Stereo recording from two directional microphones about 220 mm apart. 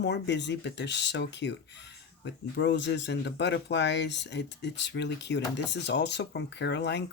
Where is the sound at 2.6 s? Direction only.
50° left (ahead or behind).